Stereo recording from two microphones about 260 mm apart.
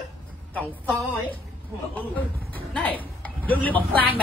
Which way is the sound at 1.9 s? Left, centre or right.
Centre.